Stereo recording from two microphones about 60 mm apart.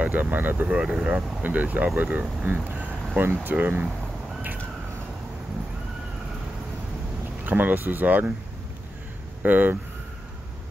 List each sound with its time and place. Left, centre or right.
0.0 s speech: right
0.7 s speech: centre; by 3.8 s right
7.4 s speech: right
9.4 s speech: right